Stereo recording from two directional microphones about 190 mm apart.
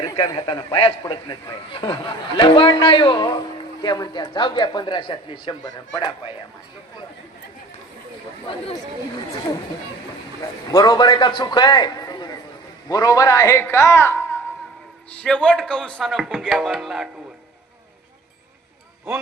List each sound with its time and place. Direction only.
0.0 s a man's voice: 20° left (ahead or behind)
10.7 s a man's voice: 20° left (ahead or behind); by 17.1 s centre (ahead or behind)